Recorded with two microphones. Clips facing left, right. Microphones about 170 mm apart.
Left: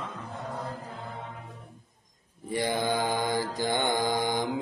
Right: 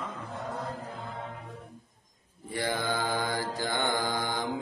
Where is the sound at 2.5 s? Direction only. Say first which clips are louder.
Left 3 dB; 15° left (ahead or behind).